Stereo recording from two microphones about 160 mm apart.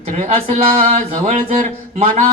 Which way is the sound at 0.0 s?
40° right (ahead or behind).